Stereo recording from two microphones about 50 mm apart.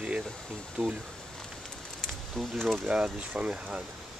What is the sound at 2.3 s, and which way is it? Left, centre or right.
Speech, centre.